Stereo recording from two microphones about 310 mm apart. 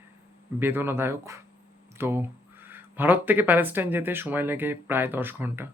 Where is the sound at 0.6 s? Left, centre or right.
Centre.